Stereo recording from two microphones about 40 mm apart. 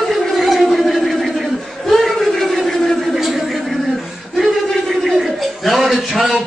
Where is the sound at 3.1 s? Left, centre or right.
Centre.